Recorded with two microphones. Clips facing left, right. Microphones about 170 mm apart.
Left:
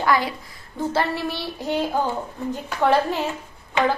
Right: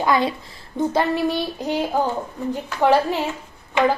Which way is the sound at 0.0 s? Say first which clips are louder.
Right 2 dB; 20° right (ahead or behind).